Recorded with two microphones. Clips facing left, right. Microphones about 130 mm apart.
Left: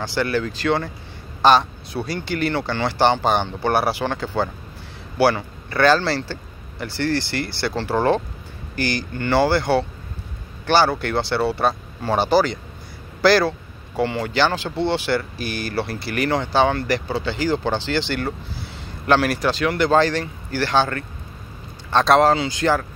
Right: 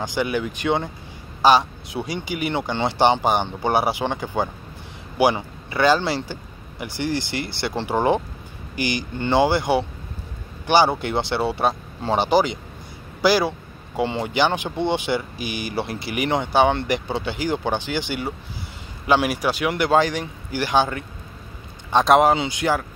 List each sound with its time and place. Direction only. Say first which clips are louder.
0.0 s speech: left 1 dB; 15° right (ahead or behind)